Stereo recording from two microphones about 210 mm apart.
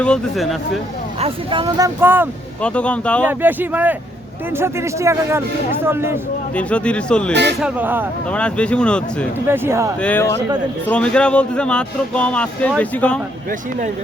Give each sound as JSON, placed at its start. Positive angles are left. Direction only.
{"t": 0.0, "sound": "speech", "side_deg": 5}
{"t": 1.2, "sound": "speech", "side_deg": -25}
{"t": 2.6, "sound": "speech", "side_deg": 5}
{"t": 3.2, "sound": "speech", "side_deg": -10}
{"t": 6.6, "sound": "speech", "side_deg": 5}
{"t": 7.6, "sound": "speech", "side_deg": -10}
{"t": 8.3, "sound": "speech", "side_deg": 5}
{"t": 9.5, "sound": "speech", "side_deg": -15}
{"t": 10.0, "sound": "speech", "side_deg": 5}
{"t": 13.5, "sound": "speech", "side_deg": -40}